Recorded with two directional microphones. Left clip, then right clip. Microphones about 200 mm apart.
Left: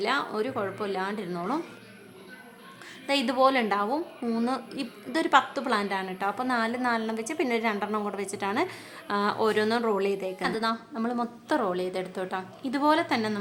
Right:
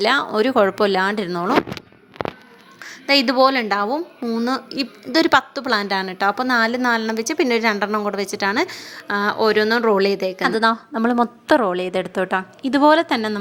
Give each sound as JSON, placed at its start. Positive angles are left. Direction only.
{"t": 0.0, "sound": "a woman's voice", "side_deg": -40}
{"t": 2.8, "sound": "a woman's voice", "side_deg": -20}
{"t": 4.2, "sound": "a woman's voice", "side_deg": -10}
{"t": 4.4, "sound": "a woman's voice", "side_deg": -25}
{"t": 10.4, "sound": "a woman's voice", "side_deg": -40}